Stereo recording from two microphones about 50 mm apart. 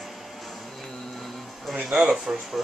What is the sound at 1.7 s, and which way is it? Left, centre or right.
Speech, centre.